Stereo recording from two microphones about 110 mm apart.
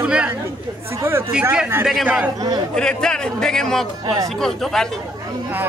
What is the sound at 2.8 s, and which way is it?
A man's voice, 5° left (ahead or behind).